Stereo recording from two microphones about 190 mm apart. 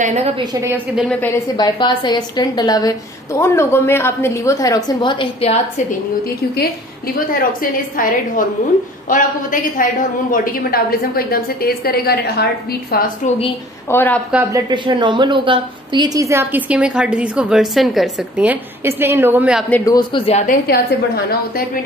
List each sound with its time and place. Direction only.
0.0 s a woman's voice: 35° right (ahead or behind)
1.6 s a woman's voice: 25° left (ahead or behind)
7.3 s a woman's voice: 45° left (ahead or behind)
13.8 s a woman's voice: 10° left (ahead or behind)
14.3 s a woman's voice: 10° right (ahead or behind)
14.7 s a woman's voice: 25° right (ahead or behind); by 19.6 s 10° right (ahead or behind)
19.7 s a woman's voice: 20° left (ahead or behind)
20.4 s a woman's voice: 55° left (ahead or behind)